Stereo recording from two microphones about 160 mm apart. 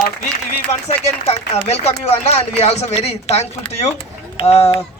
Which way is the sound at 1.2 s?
40° left (ahead or behind).